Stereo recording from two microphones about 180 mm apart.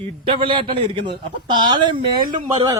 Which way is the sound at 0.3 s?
30° right (ahead or behind).